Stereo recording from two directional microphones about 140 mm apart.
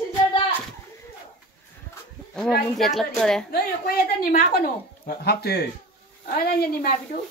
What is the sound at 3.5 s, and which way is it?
Speech, 90° left.